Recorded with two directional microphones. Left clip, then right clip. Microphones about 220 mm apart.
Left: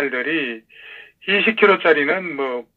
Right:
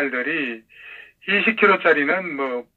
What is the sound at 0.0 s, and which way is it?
Speech, 45° left (ahead or behind).